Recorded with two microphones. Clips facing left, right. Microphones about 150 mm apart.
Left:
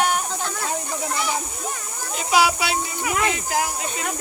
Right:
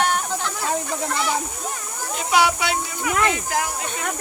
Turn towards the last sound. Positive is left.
turn(degrees=5)  # may be behind; listen again after turning